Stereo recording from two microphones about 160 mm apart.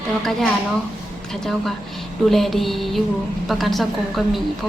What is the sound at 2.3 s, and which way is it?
A woman's voice, centre (ahead or behind).